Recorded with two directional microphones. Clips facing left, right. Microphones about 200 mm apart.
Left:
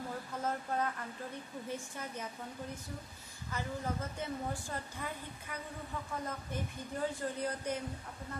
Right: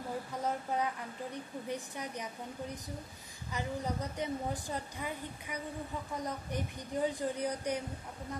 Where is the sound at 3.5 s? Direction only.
15° right (ahead or behind).